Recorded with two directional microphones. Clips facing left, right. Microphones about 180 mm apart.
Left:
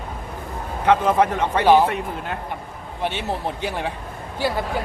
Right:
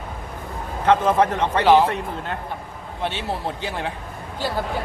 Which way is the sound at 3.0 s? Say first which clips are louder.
Left 1 dB; 15° left (ahead or behind).